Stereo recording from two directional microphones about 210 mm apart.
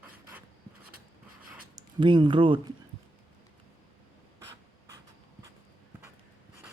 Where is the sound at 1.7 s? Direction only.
20° right (ahead or behind).